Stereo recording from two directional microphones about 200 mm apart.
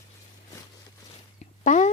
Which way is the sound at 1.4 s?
40° left (ahead or behind).